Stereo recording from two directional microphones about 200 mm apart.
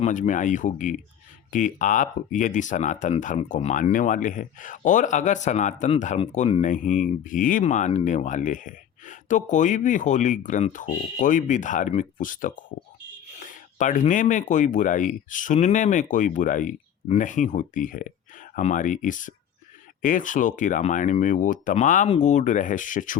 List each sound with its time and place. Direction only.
0.0 s speech: 40° left (ahead or behind)